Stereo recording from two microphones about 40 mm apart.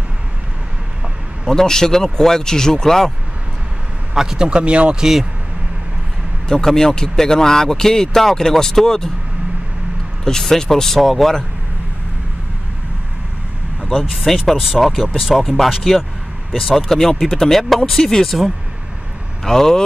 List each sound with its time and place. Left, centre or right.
1.5 s speech: centre
4.1 s speech: centre
6.5 s speech: centre
10.2 s speech: centre
13.8 s speech: centre